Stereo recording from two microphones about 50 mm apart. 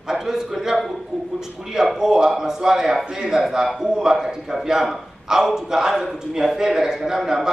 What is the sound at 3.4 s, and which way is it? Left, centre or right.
A man's voice, centre.